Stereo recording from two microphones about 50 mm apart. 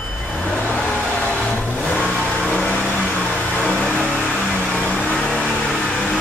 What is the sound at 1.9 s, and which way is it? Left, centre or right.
Vehicle, centre.